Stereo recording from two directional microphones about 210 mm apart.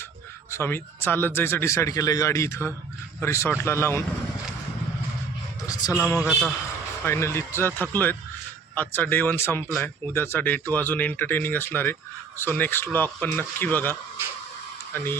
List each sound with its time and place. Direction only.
0.5 s speech: 10° left (ahead or behind)
5.6 s a sound: 15° left (ahead or behind)
6.1 s a man's voice: 5° right (ahead or behind)
7.0 s speech: 10° left (ahead or behind)